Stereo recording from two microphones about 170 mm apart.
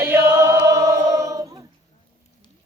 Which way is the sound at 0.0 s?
15° right (ahead or behind).